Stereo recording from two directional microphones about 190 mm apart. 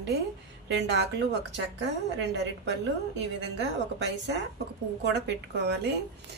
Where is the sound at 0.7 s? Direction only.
65° right (ahead or behind).